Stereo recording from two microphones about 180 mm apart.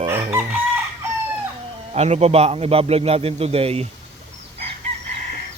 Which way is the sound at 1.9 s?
35° right (ahead or behind).